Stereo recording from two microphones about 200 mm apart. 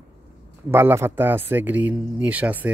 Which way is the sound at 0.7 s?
10° right (ahead or behind).